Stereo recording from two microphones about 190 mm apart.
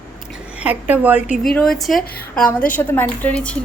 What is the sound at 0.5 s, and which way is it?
Speech, 10° right (ahead or behind).